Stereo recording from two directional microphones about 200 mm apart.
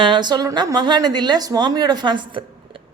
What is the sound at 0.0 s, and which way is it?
A woman's voice, 20° right (ahead or behind).